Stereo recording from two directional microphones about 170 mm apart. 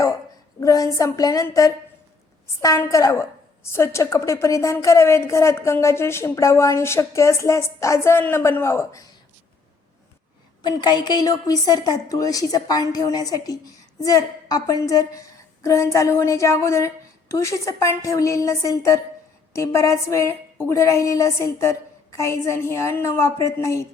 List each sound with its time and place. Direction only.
0.6 s a woman's voice: 20° left (ahead or behind)
10.6 s a woman's voice: 25° left (ahead or behind)